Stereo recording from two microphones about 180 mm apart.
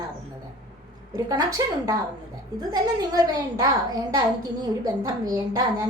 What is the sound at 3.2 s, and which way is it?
Speech, 20° right (ahead or behind).